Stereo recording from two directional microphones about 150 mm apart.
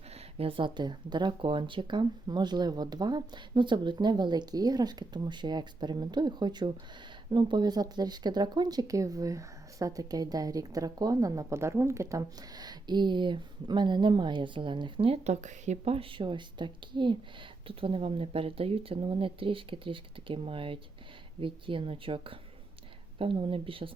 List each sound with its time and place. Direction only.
0.3 s speech: 35° right (ahead or behind)